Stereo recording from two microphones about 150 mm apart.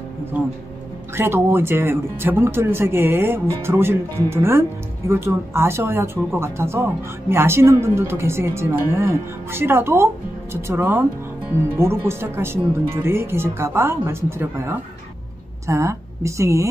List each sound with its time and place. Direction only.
1.1 s a woman's voice: 15° right (ahead or behind)